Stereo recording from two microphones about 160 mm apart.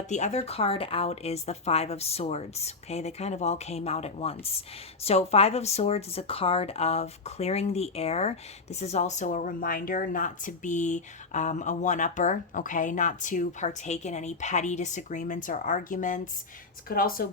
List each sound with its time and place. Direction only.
0.1 s a woman's voice: 45° left (ahead or behind)
16.9 s speech: 65° left (ahead or behind)